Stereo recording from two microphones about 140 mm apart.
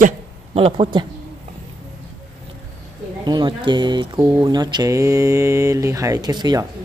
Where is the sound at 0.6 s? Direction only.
40° right (ahead or behind).